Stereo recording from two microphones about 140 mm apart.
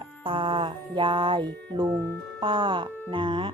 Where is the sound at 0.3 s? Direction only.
35° right (ahead or behind).